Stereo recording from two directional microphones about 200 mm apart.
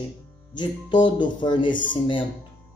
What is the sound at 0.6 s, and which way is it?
A man's voice, 25° left (ahead or behind).